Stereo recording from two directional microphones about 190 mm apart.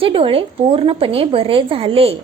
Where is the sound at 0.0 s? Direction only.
30° right (ahead or behind).